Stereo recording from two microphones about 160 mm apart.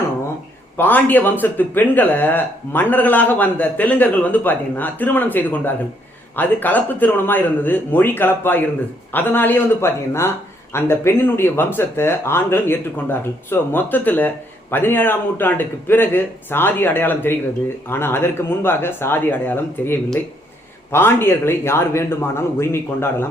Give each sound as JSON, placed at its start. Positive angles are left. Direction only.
{"t": 0.8, "sound": "speech", "side_deg": 10}